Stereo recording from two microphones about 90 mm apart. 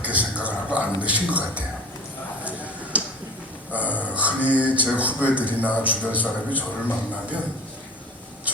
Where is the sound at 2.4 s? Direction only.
15° right (ahead or behind).